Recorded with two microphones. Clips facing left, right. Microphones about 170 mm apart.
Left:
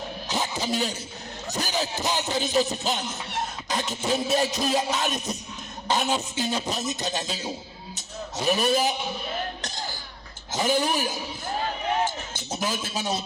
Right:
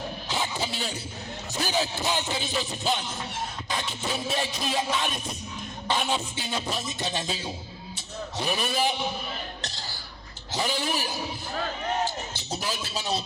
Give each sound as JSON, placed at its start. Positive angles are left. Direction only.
{"t": 0.3, "sound": "a sound", "side_deg": 45}
{"t": 8.4, "sound": "a man's voice", "side_deg": 45}
{"t": 9.6, "sound": "music", "side_deg": 45}
{"t": 10.5, "sound": "a man's voice", "side_deg": 45}